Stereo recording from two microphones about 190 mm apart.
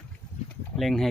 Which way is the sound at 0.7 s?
Centre (ahead or behind).